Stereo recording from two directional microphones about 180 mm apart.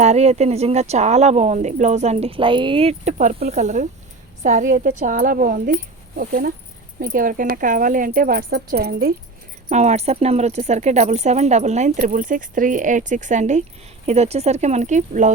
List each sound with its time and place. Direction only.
0.0 s a woman's voice: 40° right (ahead or behind); by 9.1 s 55° right (ahead or behind)
9.6 s speech: 40° right (ahead or behind)